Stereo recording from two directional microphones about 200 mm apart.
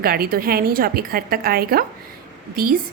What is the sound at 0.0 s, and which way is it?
A woman's voice, 50° right (ahead or behind).